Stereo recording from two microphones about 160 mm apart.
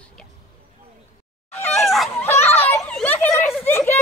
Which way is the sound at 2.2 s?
10° left (ahead or behind).